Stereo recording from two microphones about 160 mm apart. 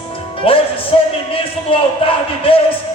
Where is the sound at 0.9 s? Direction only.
35° left (ahead or behind).